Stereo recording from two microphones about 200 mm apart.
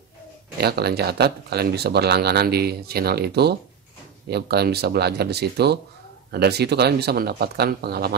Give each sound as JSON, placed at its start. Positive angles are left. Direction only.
{"t": 0.6, "sound": "speech", "side_deg": -55}